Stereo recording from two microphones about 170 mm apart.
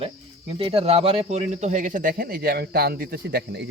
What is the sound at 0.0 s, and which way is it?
Speech, 35° right (ahead or behind).